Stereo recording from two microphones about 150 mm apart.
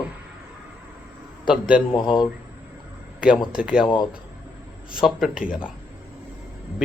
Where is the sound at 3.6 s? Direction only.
5° right (ahead or behind).